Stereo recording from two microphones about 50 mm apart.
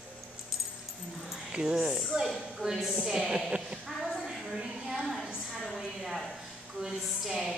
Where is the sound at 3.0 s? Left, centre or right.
Centre.